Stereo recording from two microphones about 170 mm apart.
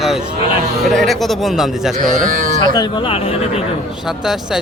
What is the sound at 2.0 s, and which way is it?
Speech, 50° right (ahead or behind).